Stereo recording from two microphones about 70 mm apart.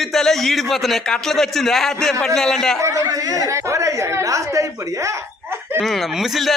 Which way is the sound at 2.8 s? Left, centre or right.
Right.